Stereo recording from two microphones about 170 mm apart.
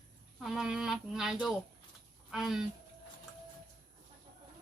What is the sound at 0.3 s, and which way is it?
A woman's voice, 5° right (ahead or behind).